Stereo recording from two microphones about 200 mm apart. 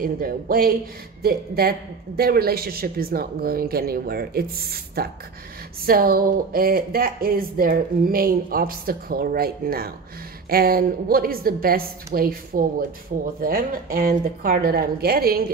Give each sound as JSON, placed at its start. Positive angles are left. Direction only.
{"t": 0.0, "sound": "speech", "side_deg": -45}